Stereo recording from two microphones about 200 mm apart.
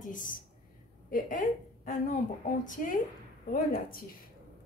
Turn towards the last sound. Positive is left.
turn(degrees=45)  # may be behind; listen again after turning